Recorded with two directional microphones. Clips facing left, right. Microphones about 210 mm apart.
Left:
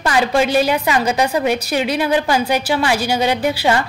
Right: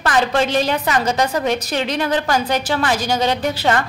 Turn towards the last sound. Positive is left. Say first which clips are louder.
# left 2 dB
turn(degrees=10)  # may be behind; listen again after turning